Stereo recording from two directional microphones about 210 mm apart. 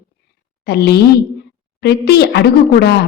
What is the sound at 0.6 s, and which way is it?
A woman's voice, 50° left (ahead or behind).